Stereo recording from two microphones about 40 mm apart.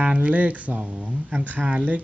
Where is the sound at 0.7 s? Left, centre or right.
Right.